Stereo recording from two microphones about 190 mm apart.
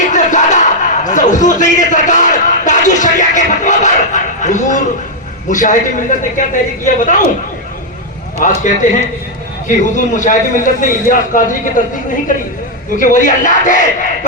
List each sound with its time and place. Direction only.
0.0 s a sound: 40° left (ahead or behind)
5.5 s speech: 40° left (ahead or behind)
8.6 s a man's voice: 40° left (ahead or behind)
13.0 s speech: 45° left (ahead or behind)